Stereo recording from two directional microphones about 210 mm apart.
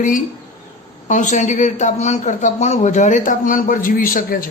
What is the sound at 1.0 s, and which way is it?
A man's voice, 35° left (ahead or behind).